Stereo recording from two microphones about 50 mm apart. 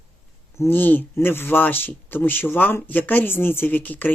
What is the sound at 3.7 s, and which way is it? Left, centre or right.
Speech, left.